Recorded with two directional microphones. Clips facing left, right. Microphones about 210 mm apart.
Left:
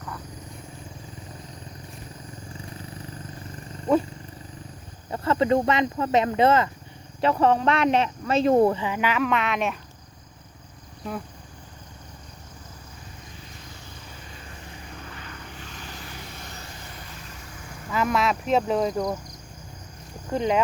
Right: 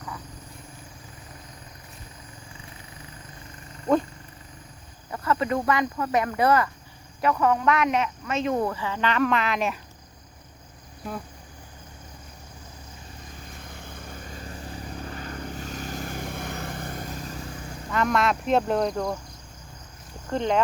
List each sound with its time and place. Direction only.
5.1 s speech: 25° left (ahead or behind); by 9.7 s centre (ahead or behind)
13.6 s vehicle: 55° right (ahead or behind); by 17.5 s 35° right (ahead or behind)
17.9 s speech: 5° left (ahead or behind)
20.3 s speech: 5° left (ahead or behind)